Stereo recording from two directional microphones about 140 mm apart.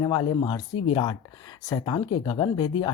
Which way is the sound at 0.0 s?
35° left (ahead or behind).